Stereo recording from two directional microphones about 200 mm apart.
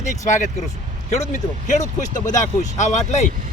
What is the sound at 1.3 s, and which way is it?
Speech, 40° left (ahead or behind).